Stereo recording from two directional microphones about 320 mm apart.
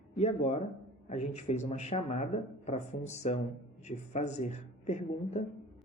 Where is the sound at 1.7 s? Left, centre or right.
Left.